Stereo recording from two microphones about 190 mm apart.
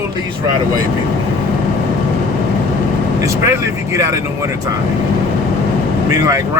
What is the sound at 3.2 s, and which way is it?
Speech, 15° right (ahead or behind).